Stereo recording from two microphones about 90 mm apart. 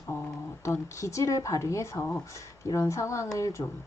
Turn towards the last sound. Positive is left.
turn(degrees=35)  # may be behind; listen again after turning